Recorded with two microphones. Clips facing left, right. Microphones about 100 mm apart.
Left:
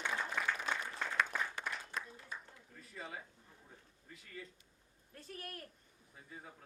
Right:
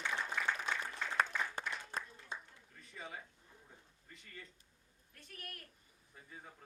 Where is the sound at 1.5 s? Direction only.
35° right (ahead or behind).